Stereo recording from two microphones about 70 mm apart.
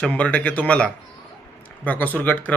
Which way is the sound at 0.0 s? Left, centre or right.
Centre.